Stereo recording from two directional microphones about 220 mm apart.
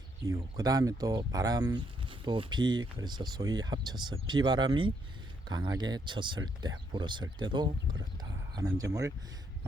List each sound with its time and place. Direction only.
0.3 s speech: 15° right (ahead or behind)